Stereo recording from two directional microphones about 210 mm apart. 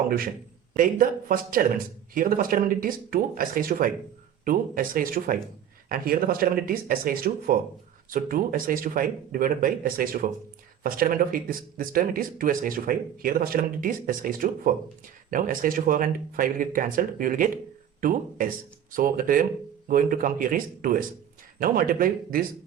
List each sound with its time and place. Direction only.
0.8 s speech: 40° right (ahead or behind)